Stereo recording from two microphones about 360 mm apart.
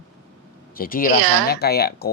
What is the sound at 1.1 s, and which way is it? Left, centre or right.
Speech, right.